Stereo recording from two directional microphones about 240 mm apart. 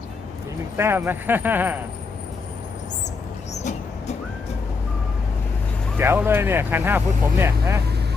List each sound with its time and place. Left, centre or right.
0.8 s speech: centre
3.5 s vehicle: left
6.0 s speech: centre